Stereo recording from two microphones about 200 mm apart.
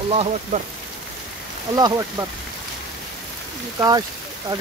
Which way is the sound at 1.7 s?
20° right (ahead or behind).